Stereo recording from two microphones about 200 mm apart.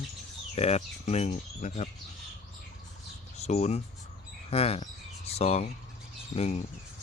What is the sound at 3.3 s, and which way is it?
Speech, 35° left (ahead or behind).